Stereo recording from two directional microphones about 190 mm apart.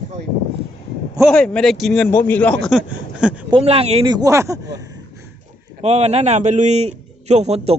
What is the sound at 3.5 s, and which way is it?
Speech, 30° right (ahead or behind).